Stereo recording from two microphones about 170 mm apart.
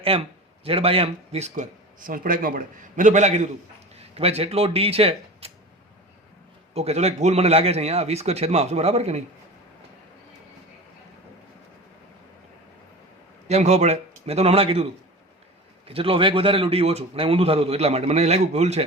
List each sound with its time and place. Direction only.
0.0 s speech: 35° right (ahead or behind)
6.7 s a man's voice: 40° right (ahead or behind)
13.5 s a man's voice: 40° right (ahead or behind)
15.9 s a man's voice: 35° right (ahead or behind)